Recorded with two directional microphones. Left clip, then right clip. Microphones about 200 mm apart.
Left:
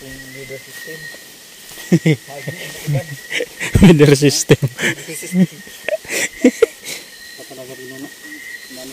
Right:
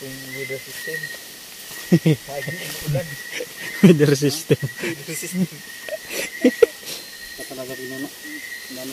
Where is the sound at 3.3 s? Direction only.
45° left (ahead or behind).